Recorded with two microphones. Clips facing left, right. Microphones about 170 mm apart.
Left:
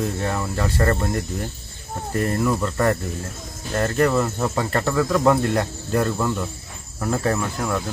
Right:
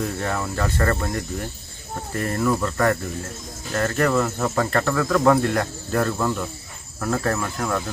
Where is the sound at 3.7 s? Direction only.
25° left (ahead or behind).